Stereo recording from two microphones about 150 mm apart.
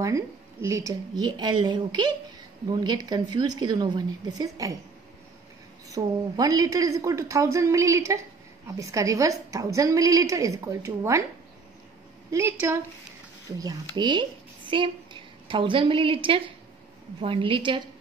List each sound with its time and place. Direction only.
0.0 s a woman's voice: 20° right (ahead or behind)
5.9 s a woman's voice: 25° right (ahead or behind)
12.3 s a woman's voice: 15° right (ahead or behind)
13.6 s a woman's voice: 25° right (ahead or behind)